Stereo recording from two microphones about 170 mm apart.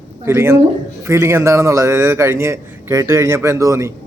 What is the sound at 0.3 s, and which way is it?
A man's voice, 15° right (ahead or behind).